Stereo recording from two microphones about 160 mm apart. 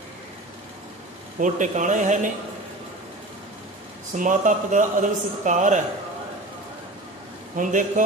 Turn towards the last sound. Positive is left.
turn(degrees=-50)  # may be behind; listen again after turning